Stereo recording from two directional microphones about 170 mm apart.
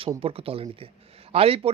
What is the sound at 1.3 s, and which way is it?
Speech, 35° right (ahead or behind).